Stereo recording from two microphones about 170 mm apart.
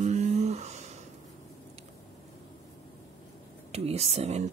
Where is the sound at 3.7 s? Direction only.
40° right (ahead or behind).